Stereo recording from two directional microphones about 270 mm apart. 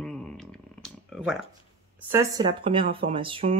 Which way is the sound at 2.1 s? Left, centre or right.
Centre.